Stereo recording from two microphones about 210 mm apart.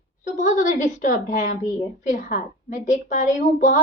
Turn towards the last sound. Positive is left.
turn(degrees=35)  # may be behind; listen again after turning